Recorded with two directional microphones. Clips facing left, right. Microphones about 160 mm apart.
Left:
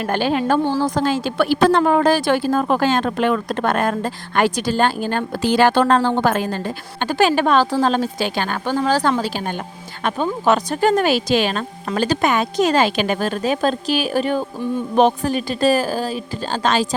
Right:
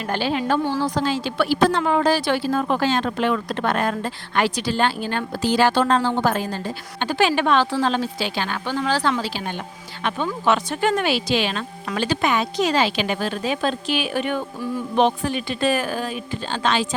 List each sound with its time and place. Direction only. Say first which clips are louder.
0.0 s a woman's voice: left 4 dB; 50° left (ahead or behind)